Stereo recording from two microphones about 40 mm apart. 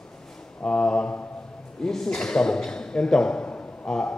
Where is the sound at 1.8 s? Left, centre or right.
Centre.